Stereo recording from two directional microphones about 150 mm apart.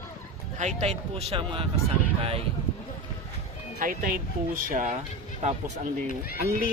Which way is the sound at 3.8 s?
70° right (ahead or behind).